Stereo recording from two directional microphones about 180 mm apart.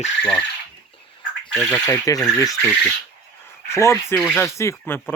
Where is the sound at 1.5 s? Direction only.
5° left (ahead or behind).